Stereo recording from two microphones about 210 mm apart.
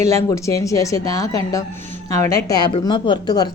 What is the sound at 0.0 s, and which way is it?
A woman's voice, 15° left (ahead or behind).